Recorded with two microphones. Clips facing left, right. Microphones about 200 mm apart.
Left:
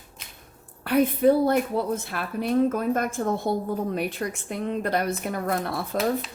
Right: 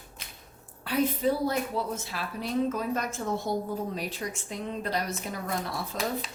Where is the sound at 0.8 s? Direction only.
60° left (ahead or behind).